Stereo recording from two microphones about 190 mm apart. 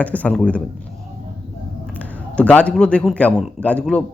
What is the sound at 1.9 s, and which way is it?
A man's voice, 10° left (ahead or behind).